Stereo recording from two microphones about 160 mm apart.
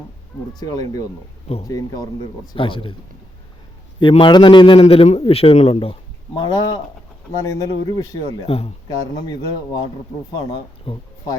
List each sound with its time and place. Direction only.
0.6 s speech: 25° left (ahead or behind)
2.6 s a man's voice: 30° left (ahead or behind)
4.0 s a man's voice: 30° left (ahead or behind)
8.4 s a man's voice: 40° left (ahead or behind)
8.9 s speech: 25° left (ahead or behind)